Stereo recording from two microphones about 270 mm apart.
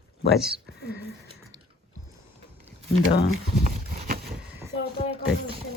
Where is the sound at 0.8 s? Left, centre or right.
Left.